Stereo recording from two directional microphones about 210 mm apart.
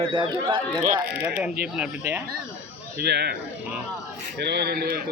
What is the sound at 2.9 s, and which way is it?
Speech, 50° right (ahead or behind).